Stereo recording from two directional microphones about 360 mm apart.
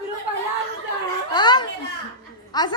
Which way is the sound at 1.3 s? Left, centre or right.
Centre.